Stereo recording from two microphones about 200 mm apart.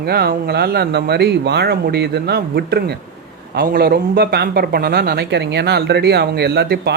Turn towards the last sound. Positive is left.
turn(degrees=-55)  # may be behind; listen again after turning